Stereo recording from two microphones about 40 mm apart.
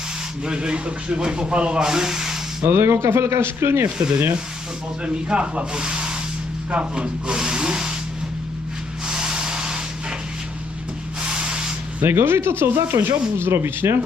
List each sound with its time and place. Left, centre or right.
0.4 s a man's voice: right
1.9 s sanding: centre
2.6 s speech: right
5.0 s a man's voice: right
7.3 s a sound: centre
9.0 s a sound: centre
11.3 s spray: right
12.0 s speech: right